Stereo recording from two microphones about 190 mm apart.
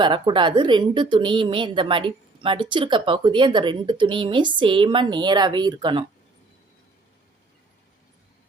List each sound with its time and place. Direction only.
0.0 s a woman's voice: 25° right (ahead or behind)